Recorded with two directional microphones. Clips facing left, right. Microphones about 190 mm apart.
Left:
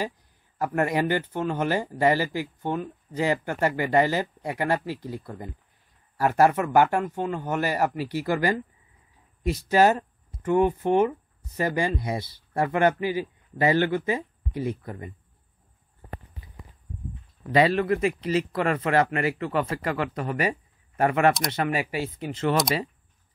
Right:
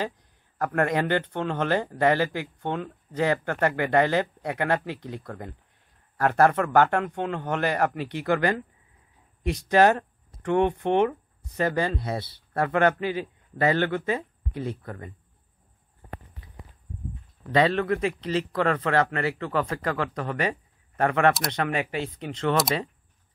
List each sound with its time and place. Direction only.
0.6 s a man's voice: 10° left (ahead or behind)
17.4 s a man's voice: 10° left (ahead or behind)